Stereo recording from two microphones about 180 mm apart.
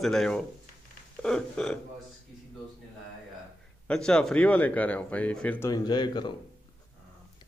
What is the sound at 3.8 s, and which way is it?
Speech, 5° left (ahead or behind).